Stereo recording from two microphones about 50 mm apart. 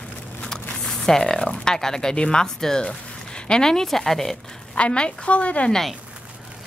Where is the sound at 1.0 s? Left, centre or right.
Centre.